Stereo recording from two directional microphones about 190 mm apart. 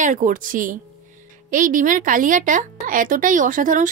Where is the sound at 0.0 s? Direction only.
45° right (ahead or behind).